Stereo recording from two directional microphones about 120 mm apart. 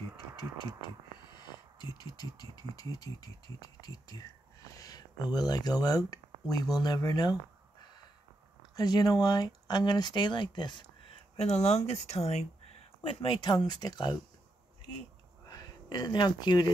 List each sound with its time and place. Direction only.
0.6 s speech: 40° left (ahead or behind)
8.7 s speech: 35° left (ahead or behind)
11.3 s speech: 65° left (ahead or behind)
13.0 s speech: 45° left (ahead or behind)
15.4 s speech: 35° left (ahead or behind)